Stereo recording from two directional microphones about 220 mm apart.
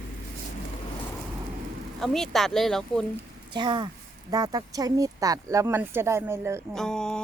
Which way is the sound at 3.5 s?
20° right (ahead or behind).